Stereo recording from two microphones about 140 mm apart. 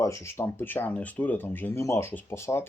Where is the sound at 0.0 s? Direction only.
20° left (ahead or behind).